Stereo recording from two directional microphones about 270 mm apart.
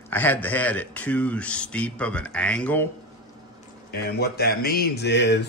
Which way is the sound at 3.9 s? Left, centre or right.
Left.